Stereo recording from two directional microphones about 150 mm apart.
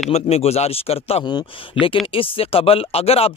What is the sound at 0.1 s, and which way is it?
Speech, 45° left (ahead or behind).